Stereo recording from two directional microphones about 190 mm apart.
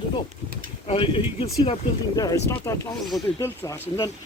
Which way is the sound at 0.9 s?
30° left (ahead or behind).